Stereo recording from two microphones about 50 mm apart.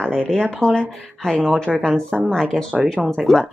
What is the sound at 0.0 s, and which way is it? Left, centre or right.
Speech, centre.